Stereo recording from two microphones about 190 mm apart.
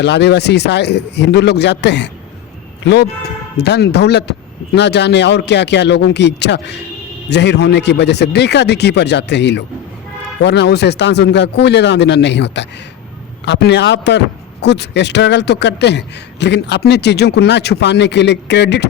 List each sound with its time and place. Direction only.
0.0 s a man's voice: 65° left (ahead or behind)